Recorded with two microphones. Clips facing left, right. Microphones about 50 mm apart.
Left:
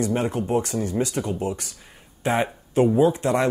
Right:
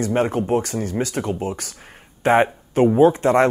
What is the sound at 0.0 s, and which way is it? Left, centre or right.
Speech, right.